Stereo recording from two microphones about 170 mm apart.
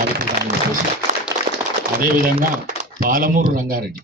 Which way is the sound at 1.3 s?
20° right (ahead or behind).